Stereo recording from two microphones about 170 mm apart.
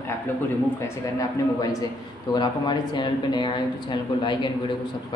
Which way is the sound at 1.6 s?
20° left (ahead or behind).